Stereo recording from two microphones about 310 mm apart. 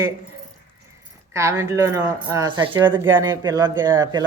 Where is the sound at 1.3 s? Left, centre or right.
Centre.